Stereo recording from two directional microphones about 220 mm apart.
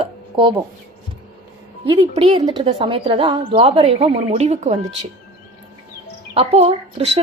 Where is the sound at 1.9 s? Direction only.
25° right (ahead or behind).